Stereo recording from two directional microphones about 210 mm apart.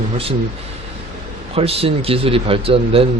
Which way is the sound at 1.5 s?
30° right (ahead or behind).